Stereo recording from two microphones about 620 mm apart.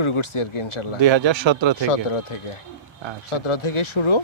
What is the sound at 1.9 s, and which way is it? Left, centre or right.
Speech, left.